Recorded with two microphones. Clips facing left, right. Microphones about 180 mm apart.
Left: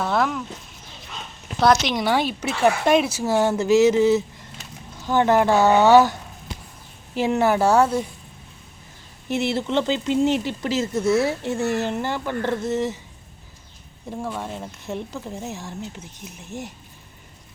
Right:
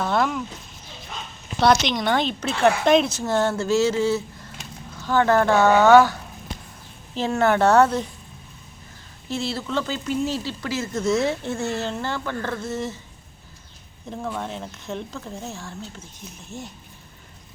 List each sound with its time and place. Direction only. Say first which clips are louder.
0.0 s speech: even; centre (ahead or behind)
1.6 s speech: left 1 dB; 5° left (ahead or behind)
7.1 s speech: left 1 dB; 15° left (ahead or behind)
9.3 s speech: left 4 dB; 20° left (ahead or behind)
14.1 s speech: even; 10° left (ahead or behind)